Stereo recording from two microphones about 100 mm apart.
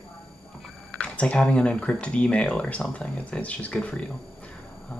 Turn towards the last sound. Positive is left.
turn(degrees=10)  # may be behind; listen again after turning